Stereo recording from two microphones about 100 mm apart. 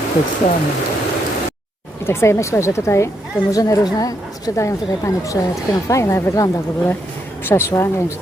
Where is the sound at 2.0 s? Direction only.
25° left (ahead or behind).